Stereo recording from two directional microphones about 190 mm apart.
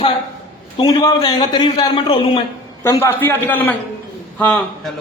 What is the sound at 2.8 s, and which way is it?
A man's voice, 15° left (ahead or behind).